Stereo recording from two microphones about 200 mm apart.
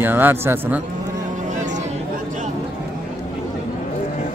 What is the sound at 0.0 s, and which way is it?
Speech, 10° right (ahead or behind).